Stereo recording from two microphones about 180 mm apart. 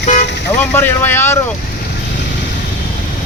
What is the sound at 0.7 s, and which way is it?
Speech, 10° left (ahead or behind).